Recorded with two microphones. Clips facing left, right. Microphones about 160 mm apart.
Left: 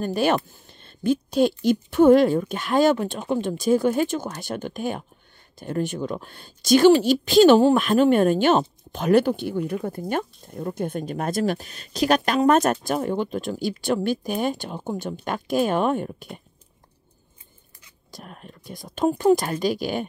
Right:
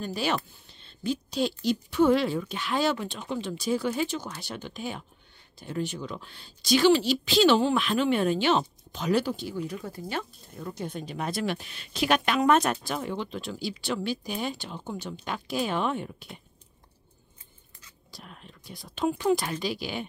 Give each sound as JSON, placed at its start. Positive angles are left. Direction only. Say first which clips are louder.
{"t": 0.0, "sound": "speech", "louder": "left 8 dB", "side_deg": 50}
{"t": 18.1, "sound": "speech", "louder": "left 6 dB", "side_deg": 50}